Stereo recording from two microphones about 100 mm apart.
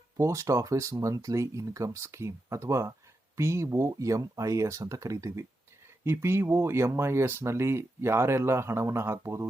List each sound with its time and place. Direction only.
0.2 s speech: 30° right (ahead or behind)